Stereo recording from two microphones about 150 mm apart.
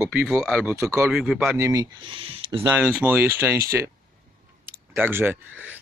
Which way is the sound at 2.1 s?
35° right (ahead or behind).